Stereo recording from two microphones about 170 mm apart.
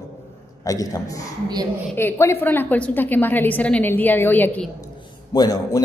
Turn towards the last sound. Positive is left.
turn(degrees=20)  # may be behind; listen again after turning